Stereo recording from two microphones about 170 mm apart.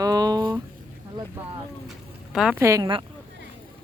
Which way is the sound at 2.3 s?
5° right (ahead or behind).